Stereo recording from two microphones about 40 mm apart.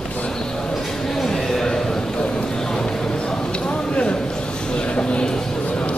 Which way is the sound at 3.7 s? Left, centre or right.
Left.